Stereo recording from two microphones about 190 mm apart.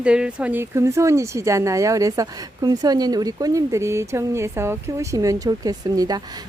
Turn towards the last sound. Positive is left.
turn(degrees=-20)  # may be behind; listen again after turning